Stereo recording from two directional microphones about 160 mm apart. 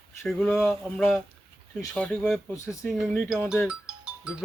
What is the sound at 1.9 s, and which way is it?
Speech, 10° left (ahead or behind).